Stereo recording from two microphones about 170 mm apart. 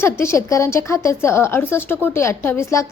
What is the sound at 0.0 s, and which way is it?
A woman's voice, 15° left (ahead or behind).